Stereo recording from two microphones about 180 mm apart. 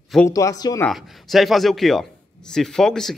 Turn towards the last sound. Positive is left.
turn(degrees=0)  # may be behind; listen again after turning